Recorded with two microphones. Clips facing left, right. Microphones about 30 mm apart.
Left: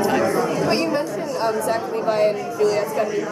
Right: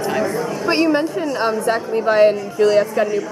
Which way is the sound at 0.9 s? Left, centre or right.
Right.